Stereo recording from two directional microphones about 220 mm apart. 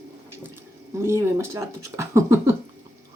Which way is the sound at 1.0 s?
10° right (ahead or behind).